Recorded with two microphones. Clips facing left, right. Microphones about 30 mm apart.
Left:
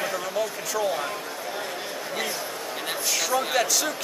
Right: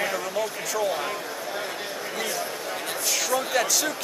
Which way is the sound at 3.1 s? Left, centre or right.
Centre.